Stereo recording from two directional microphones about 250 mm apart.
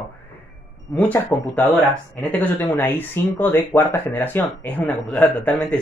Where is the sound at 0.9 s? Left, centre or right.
Centre.